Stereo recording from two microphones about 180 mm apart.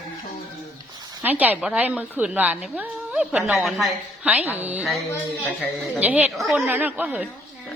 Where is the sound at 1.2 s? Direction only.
10° right (ahead or behind).